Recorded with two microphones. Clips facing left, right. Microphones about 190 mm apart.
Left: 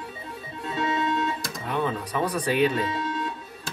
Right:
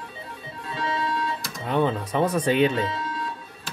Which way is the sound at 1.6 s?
25° right (ahead or behind).